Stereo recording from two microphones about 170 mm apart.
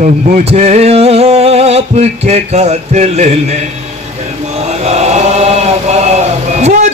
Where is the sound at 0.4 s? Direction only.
40° right (ahead or behind).